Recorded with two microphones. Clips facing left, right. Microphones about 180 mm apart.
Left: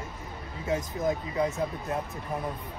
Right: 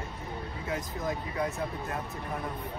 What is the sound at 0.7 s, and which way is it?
Speech, 20° left (ahead or behind).